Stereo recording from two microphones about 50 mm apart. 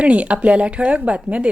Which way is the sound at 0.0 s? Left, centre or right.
Right.